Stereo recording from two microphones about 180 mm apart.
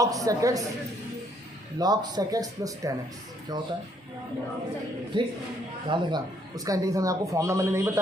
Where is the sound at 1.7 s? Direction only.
20° right (ahead or behind).